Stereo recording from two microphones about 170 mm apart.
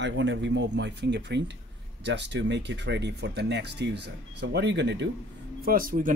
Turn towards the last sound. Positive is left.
turn(degrees=-50)  # may be behind; listen again after turning